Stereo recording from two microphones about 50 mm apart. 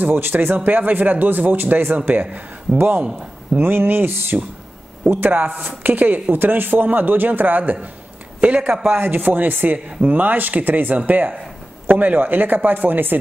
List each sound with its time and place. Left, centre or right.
0.0 s a man's voice: right
3.5 s a man's voice: right
5.9 s a man's voice: right